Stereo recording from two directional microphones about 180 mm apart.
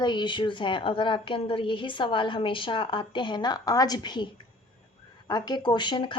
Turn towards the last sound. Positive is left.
turn(degrees=25)  # may be behind; listen again after turning